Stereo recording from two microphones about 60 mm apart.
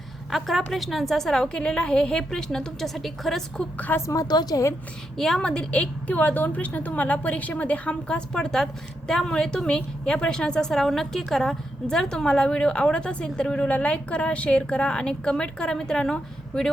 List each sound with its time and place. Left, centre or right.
0.3 s a woman's voice: centre
4.1 s a woman's voice: left
5.1 s a woman's voice: centre